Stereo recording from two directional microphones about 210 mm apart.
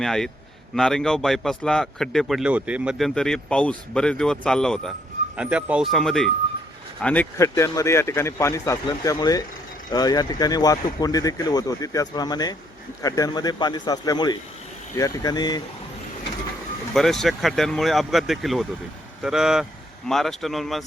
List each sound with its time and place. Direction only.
0.0 s speech: centre (ahead or behind); by 15.6 s 20° left (ahead or behind)
16.9 s speech: centre (ahead or behind)